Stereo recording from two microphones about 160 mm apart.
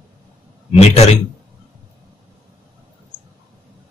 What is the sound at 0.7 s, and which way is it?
Speech, 40° left (ahead or behind).